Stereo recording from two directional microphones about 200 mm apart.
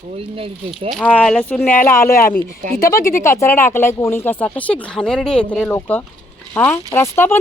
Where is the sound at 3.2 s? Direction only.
15° left (ahead or behind).